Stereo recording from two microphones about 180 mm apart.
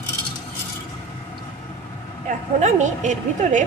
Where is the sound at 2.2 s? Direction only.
40° right (ahead or behind).